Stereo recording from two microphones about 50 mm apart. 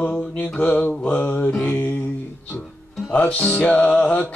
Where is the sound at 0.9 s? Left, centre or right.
Left.